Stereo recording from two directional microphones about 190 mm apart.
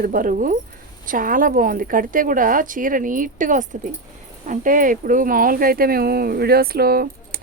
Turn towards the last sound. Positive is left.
turn(degrees=-55)  # may be behind; listen again after turning